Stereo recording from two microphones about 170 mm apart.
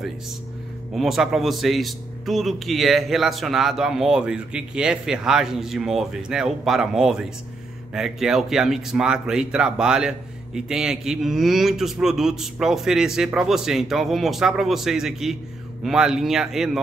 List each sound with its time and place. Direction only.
0.9 s speech: centre (ahead or behind)